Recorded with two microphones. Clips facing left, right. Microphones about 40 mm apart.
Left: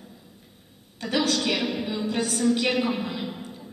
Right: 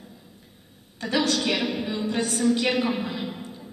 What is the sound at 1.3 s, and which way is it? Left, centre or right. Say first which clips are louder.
A woman's voice: even; centre.